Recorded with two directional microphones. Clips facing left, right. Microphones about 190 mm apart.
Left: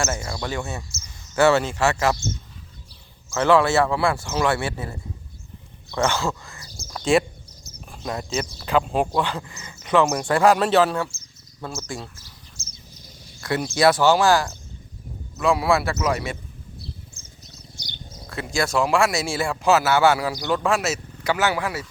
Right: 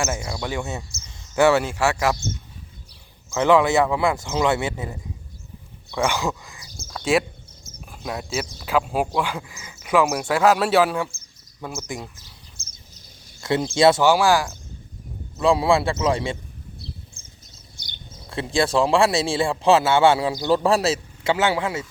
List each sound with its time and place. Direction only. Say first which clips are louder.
0.0 s speech: even; 15° right (ahead or behind)
3.3 s speech: right 1 dB; 15° right (ahead or behind)
6.9 s speech: left 1 dB; 5° right (ahead or behind)
12.5 s bird: left 4 dB; 55° right (ahead or behind)
13.4 s speech: right 2 dB; 25° right (ahead or behind)
14.0 s speech: even; 10° right (ahead or behind)
15.4 s speech: right 2 dB; 30° right (ahead or behind)
17.8 s a sound: left 4 dB; 55° right (ahead or behind)
18.3 s speech: right 3 dB; 30° right (ahead or behind)